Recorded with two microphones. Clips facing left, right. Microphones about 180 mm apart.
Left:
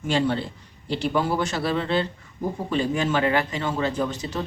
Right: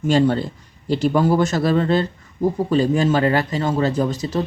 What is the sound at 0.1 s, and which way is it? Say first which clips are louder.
A man's voice: right 6 dB; 40° right (ahead or behind).